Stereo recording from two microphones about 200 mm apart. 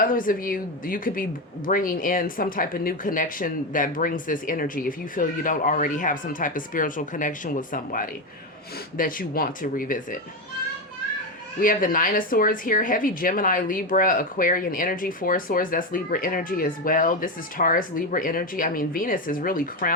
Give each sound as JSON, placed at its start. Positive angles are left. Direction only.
{"t": 0.0, "sound": "a woman's voice", "side_deg": 45}
{"t": 11.6, "sound": "a woman's voice", "side_deg": 45}